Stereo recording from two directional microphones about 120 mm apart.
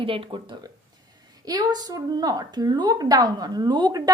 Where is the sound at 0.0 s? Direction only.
45° right (ahead or behind).